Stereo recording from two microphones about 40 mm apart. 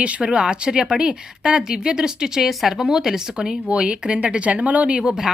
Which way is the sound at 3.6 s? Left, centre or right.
Right.